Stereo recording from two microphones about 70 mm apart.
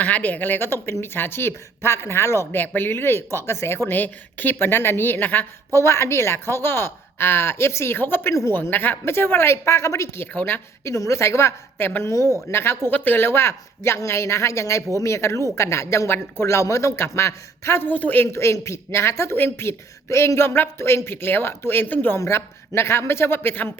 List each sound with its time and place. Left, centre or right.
0.0 s a woman's voice: left
2.6 s a woman's voice: left
5.7 s a woman's voice: left
10.3 s a woman's voice: left
10.9 s a woman's voice: left
17.8 s a woman's voice: left
18.3 s a woman's voice: left
22.2 s a woman's voice: left